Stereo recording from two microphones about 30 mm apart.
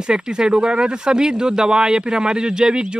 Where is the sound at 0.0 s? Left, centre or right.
Right.